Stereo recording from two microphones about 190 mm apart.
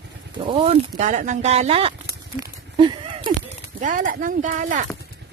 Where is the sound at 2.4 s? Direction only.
25° right (ahead or behind).